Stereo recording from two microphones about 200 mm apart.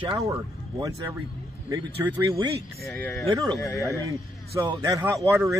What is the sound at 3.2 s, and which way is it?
Speech, 15° right (ahead or behind).